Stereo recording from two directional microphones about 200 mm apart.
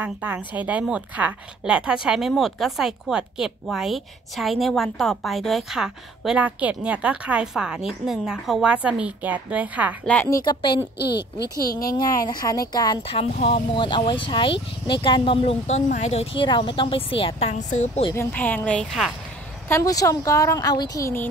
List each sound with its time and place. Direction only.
0.0 s speech: 10° right (ahead or behind)
10.0 s a woman's voice: 5° left (ahead or behind)
10.4 s speech: 20° left (ahead or behind)
11.0 s speech: 55° left (ahead or behind)
11.7 s speech: 20° left (ahead or behind); by 18.1 s 35° left (ahead or behind)
18.1 s a woman's voice: 10° left (ahead or behind)
19.7 s a woman's voice: 15° left (ahead or behind)